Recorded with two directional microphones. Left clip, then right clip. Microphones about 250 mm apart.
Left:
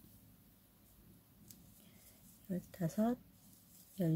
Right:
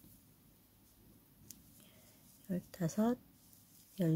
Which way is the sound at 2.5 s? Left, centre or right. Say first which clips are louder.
Right 2 dB; centre.